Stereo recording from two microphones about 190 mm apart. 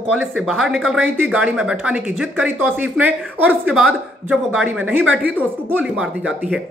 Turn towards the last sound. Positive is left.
turn(degrees=-5)  # may be behind; listen again after turning